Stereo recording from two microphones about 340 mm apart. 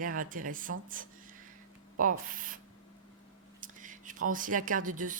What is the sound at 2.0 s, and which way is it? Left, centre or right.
Speech, right.